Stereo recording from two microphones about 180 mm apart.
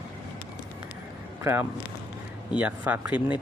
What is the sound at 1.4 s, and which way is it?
Speech, 15° right (ahead or behind).